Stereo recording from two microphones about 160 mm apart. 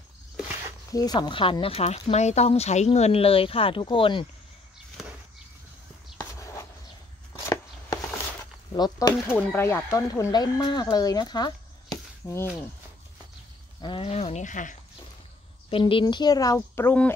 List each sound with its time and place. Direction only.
0.9 s speech: 25° left (ahead or behind)
6.3 s a sound: 15° left (ahead or behind)
8.7 s speech: 25° left (ahead or behind)
9.5 s speech: 15° left (ahead or behind)
13.7 s speech: 30° left (ahead or behind); by 14.8 s 50° left (ahead or behind)
15.7 s speech: 30° left (ahead or behind); by 17.1 s 10° left (ahead or behind)